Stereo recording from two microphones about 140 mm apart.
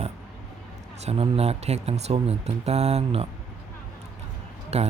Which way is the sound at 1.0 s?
45° right (ahead or behind).